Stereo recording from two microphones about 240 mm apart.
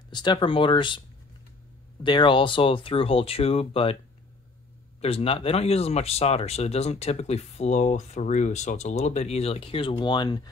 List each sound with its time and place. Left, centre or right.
0.1 s speech: centre
2.0 s speech: centre
5.0 s speech: left